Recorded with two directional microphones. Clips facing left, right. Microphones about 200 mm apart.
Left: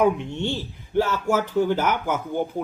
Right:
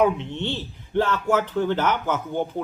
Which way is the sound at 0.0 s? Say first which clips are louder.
Even; 10° left (ahead or behind).